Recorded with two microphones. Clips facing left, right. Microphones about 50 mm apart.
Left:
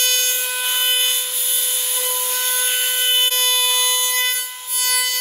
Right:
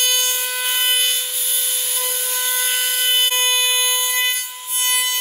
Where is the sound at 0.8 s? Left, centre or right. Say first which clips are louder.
Right 1 dB; centre.